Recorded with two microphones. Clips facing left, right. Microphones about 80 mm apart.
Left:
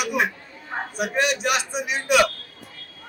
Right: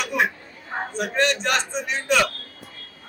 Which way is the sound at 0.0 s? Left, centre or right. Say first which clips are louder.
Even; centre.